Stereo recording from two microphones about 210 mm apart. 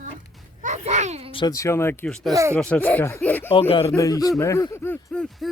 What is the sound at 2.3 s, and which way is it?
Speech, 15° right (ahead or behind).